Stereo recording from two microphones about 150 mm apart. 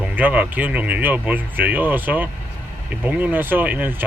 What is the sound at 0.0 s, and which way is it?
Speech, 10° right (ahead or behind).